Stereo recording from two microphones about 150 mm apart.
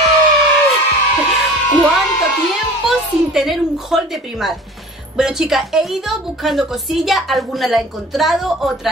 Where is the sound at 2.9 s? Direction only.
Centre (ahead or behind).